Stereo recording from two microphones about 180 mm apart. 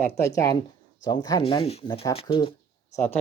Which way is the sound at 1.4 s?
30° left (ahead or behind).